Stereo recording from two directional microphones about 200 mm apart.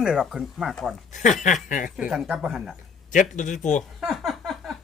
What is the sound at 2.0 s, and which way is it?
Speech, 5° right (ahead or behind).